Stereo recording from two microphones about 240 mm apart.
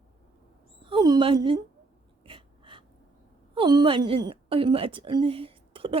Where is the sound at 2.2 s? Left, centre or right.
Right.